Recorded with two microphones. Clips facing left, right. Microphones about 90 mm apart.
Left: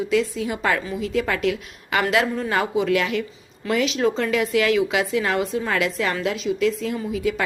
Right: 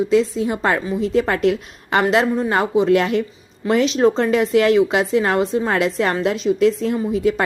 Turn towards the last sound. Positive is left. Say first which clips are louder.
# right 5 dB
turn(degrees=-40)  # may be behind; listen again after turning